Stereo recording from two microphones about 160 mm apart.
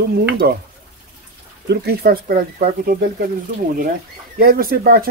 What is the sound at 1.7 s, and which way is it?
Speech, 90° right.